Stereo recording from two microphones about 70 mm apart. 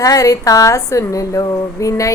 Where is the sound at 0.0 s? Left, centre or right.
Left.